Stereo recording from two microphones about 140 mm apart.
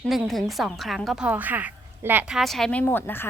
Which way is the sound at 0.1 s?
Centre (ahead or behind).